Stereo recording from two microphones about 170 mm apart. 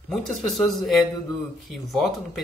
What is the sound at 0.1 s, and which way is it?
Speech, centre (ahead or behind).